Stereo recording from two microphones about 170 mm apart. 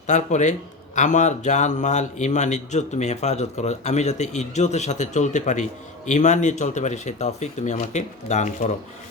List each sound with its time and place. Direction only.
0.1 s a man's voice: 45° left (ahead or behind)